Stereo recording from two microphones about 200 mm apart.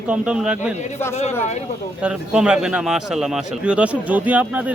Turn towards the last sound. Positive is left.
turn(degrees=-5)  # may be behind; listen again after turning